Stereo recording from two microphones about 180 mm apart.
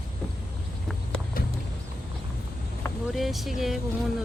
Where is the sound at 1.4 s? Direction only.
55° left (ahead or behind).